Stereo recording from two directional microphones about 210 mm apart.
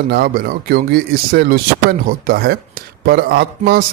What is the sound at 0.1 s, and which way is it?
Speech, 45° right (ahead or behind).